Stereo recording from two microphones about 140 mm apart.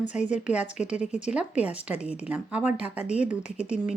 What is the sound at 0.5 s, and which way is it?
A woman's voice, 10° right (ahead or behind).